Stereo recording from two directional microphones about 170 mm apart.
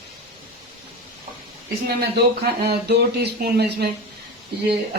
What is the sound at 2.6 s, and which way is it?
Speech, 70° right (ahead or behind).